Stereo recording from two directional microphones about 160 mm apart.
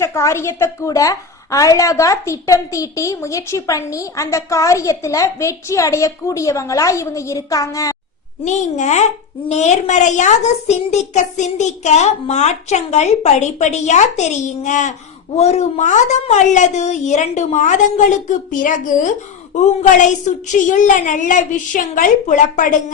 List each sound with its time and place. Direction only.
0.0 s a woman's voice: 20° left (ahead or behind)
8.4 s a child's voice: 50° left (ahead or behind)
20.5 s a child's voice: 50° left (ahead or behind)